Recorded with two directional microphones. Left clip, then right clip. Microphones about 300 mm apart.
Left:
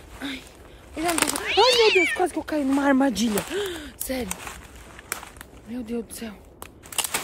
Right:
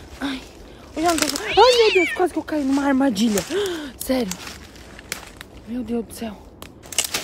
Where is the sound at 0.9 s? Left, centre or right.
Centre.